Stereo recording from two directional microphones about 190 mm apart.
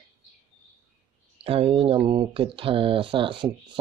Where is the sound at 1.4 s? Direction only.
30° right (ahead or behind).